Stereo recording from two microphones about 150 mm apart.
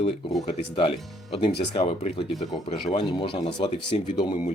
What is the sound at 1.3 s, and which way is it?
Speech, 40° left (ahead or behind).